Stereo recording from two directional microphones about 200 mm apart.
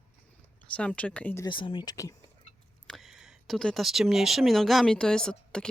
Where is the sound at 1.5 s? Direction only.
25° left (ahead or behind).